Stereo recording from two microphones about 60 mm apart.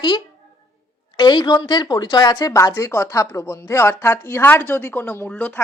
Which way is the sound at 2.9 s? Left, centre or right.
Left.